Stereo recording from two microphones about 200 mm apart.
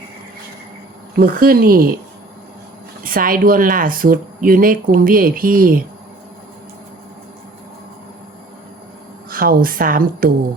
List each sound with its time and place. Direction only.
1.1 s a woman's voice: 45° right (ahead or behind)
3.0 s a woman's voice: 45° right (ahead or behind)
9.3 s a woman's voice: 45° right (ahead or behind)